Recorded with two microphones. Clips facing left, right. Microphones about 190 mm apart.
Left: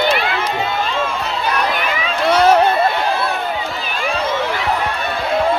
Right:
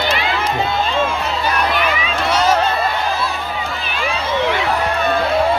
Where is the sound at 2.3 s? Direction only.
60° left (ahead or behind).